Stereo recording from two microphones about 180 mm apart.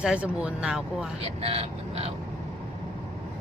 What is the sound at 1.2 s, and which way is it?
Speech, 35° right (ahead or behind).